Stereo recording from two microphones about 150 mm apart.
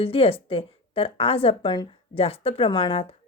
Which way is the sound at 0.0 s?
40° left (ahead or behind).